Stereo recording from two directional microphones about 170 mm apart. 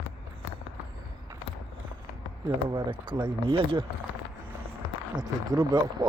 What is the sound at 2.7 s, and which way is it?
Speech, 30° right (ahead or behind).